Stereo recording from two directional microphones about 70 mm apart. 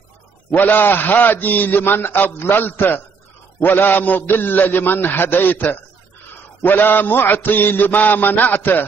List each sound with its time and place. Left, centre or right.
0.5 s mantra: left